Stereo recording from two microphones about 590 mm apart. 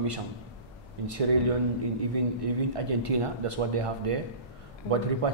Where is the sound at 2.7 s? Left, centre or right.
Right.